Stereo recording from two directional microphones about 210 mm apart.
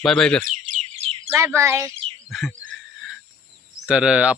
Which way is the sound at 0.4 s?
35° right (ahead or behind).